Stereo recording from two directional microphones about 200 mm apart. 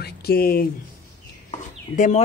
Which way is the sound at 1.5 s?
35° left (ahead or behind).